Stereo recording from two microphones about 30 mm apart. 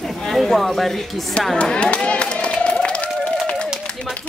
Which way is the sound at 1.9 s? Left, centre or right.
Left.